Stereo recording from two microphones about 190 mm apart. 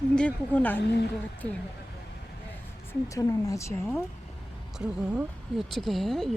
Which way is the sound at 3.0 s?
15° left (ahead or behind).